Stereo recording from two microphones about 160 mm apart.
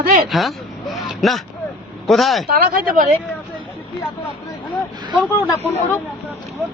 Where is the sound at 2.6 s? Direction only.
60° right (ahead or behind).